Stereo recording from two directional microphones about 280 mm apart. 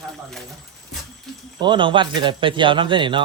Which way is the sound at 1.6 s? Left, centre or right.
Centre.